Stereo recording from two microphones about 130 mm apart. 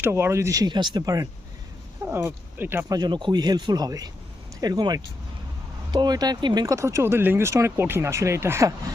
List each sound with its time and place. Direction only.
0.0 s speech: 20° right (ahead or behind)
2.9 s speech: 35° right (ahead or behind)